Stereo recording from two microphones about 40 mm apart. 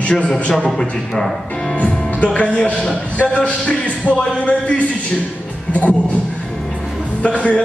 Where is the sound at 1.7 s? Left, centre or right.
Left.